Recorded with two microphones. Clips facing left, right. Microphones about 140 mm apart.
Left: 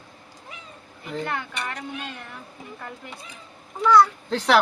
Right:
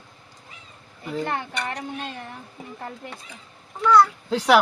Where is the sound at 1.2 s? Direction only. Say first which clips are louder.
Right 1 dB; 35° right (ahead or behind).